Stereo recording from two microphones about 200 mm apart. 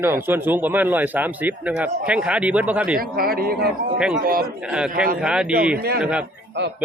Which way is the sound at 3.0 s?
45° right (ahead or behind).